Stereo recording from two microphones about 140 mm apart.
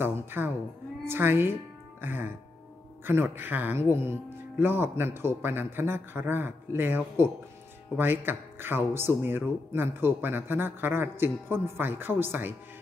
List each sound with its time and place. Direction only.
0.0 s music: 15° right (ahead or behind)
1.0 s a woman's voice: 15° right (ahead or behind)